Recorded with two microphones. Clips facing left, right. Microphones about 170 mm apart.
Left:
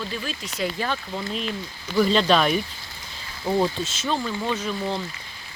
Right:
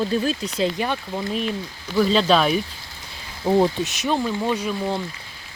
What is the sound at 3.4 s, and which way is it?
Speech, 20° right (ahead or behind).